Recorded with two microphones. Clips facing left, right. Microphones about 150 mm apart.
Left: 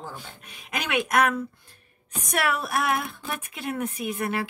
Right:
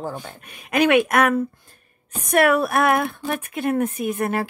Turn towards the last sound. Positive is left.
turn(degrees=-45)  # may be behind; listen again after turning